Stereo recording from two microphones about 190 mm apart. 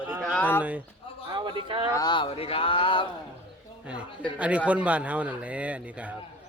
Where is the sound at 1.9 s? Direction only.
25° left (ahead or behind).